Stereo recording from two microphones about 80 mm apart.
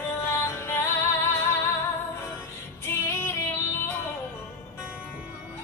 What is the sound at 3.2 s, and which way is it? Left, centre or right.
Music, left.